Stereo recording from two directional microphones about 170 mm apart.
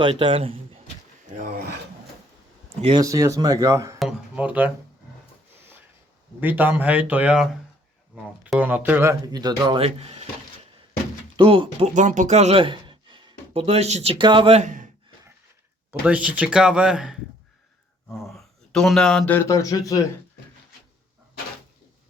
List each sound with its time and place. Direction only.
0.0 s a man's voice: 30° right (ahead or behind)
1.3 s speech: 50° right (ahead or behind)
2.8 s speech: 25° right (ahead or behind)
3.9 s a sound: 5° right (ahead or behind)
6.4 s speech: 10° right (ahead or behind); by 10.2 s 35° right (ahead or behind)
11.3 s a man's voice: 30° right (ahead or behind)
11.9 s speech: 45° right (ahead or behind); by 14.6 s 30° right (ahead or behind)
14.6 s speech: 50° right (ahead or behind)
15.9 s speech: 10° right (ahead or behind)
18.2 s speech: centre (ahead or behind); by 20.0 s 20° left (ahead or behind)